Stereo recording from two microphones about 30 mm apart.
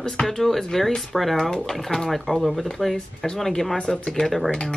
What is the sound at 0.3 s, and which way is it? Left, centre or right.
Speech, centre.